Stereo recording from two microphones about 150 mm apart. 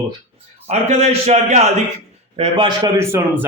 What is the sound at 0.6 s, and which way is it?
A man's voice, 45° right (ahead or behind).